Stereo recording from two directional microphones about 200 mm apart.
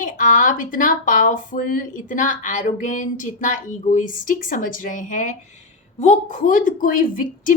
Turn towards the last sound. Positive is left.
turn(degrees=45)  # may be behind; listen again after turning